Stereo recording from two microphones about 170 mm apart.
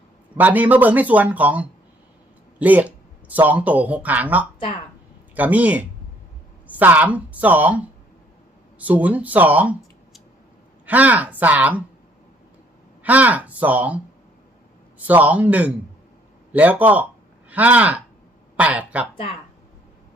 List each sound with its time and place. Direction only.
0.3 s speech: 10° right (ahead or behind)
8.8 s speech: 10° right (ahead or behind)
13.0 s speech: 10° right (ahead or behind)
19.1 s speech: 30° left (ahead or behind)